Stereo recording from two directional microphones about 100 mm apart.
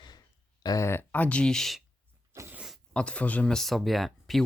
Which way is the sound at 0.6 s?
35° left (ahead or behind).